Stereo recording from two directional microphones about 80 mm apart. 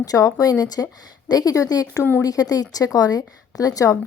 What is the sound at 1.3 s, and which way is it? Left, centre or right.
A woman's voice, left.